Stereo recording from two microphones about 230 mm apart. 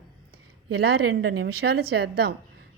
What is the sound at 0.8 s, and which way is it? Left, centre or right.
Speech, right.